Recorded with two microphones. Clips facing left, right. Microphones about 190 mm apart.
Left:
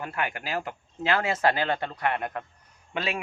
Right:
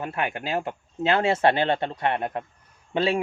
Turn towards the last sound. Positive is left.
turn(degrees=-30)  # may be behind; listen again after turning